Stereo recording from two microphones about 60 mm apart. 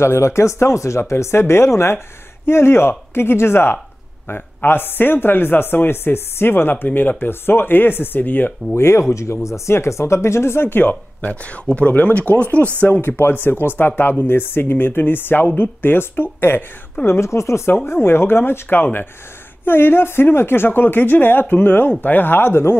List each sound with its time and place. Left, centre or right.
0.0 s speech: left
8.7 s speech: left